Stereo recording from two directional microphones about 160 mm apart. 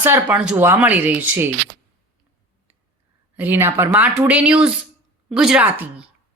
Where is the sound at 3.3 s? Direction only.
10° right (ahead or behind).